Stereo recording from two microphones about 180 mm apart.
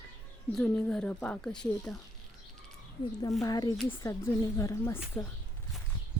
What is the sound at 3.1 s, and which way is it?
Speech, 20° left (ahead or behind).